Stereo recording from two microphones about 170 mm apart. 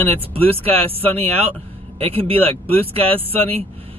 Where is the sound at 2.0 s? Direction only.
35° right (ahead or behind).